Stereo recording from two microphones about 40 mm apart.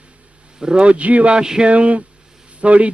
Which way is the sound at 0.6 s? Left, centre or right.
Right.